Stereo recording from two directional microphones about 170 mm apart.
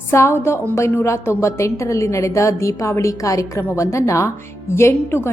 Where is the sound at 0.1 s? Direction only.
15° left (ahead or behind).